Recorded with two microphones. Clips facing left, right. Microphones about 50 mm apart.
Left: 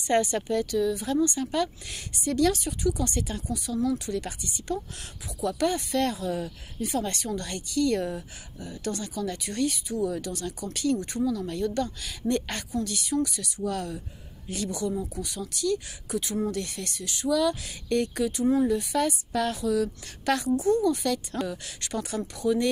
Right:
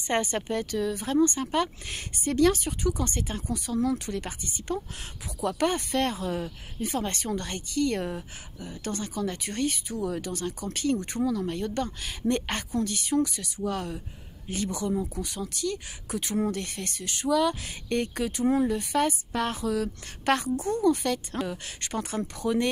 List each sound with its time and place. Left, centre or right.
0.0 s speech: right